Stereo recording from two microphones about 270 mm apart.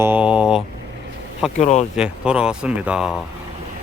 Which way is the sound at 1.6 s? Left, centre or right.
Left.